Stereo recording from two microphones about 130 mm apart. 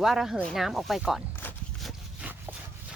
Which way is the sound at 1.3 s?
15° left (ahead or behind).